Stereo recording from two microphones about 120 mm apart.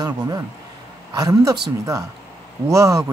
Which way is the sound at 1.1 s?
30° right (ahead or behind).